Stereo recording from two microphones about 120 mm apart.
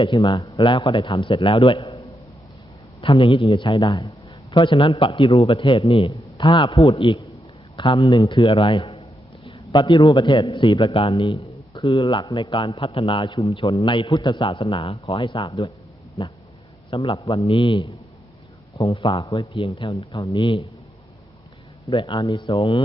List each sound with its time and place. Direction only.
0.0 s a man's voice: 45° left (ahead or behind)
3.0 s a man's voice: 45° left (ahead or behind)
21.8 s speech: 40° left (ahead or behind)